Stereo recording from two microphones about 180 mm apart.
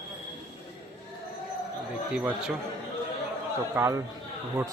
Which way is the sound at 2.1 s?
5° right (ahead or behind).